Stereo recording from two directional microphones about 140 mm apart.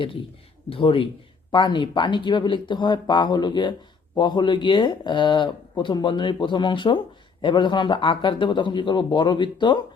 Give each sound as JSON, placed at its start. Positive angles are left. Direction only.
{"t": 0.7, "sound": "speech", "side_deg": 40}